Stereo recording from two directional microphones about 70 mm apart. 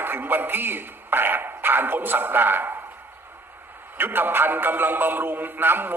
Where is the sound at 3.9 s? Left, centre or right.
Right.